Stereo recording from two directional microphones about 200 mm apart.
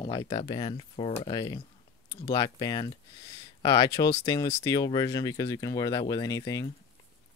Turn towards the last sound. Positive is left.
turn(degrees=15)  # may be behind; listen again after turning